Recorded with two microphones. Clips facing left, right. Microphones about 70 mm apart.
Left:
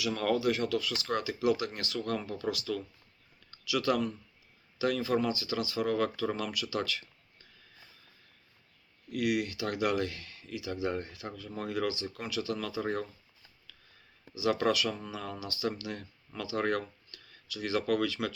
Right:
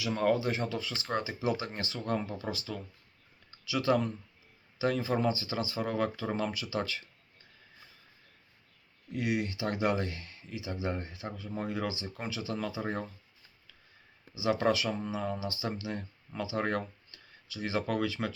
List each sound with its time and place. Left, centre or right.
0.0 s speech: right
9.1 s speech: right
14.6 s speech: right